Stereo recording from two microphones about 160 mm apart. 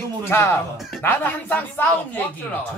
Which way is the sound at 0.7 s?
Centre (ahead or behind).